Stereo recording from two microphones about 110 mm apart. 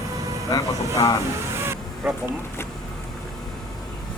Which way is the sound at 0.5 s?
30° left (ahead or behind).